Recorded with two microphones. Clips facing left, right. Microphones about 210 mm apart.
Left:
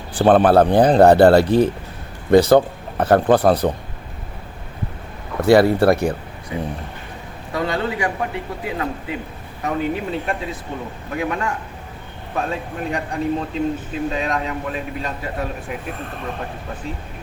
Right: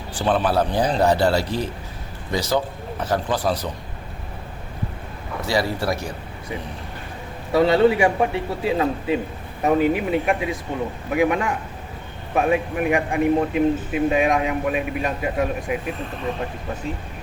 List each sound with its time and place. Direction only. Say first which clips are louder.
0.1 s speech: left 8 dB; 55° left (ahead or behind)
5.4 s speech: left 10 dB; 55° left (ahead or behind)
7.5 s a man's voice: right 7 dB; 25° right (ahead or behind); by 15.8 s 5° right (ahead or behind)